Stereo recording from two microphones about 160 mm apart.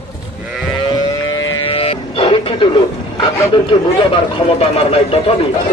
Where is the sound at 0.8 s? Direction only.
25° left (ahead or behind).